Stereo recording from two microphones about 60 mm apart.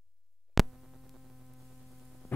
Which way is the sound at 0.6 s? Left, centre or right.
Centre.